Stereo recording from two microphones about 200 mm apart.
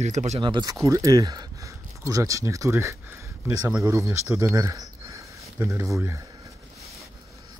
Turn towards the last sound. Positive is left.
turn(degrees=-15)  # may be behind; listen again after turning